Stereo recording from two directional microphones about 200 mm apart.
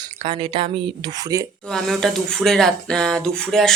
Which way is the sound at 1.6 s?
5° left (ahead or behind).